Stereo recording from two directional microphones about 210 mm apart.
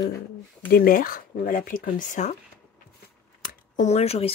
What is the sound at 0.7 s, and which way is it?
Speech, 45° left (ahead or behind).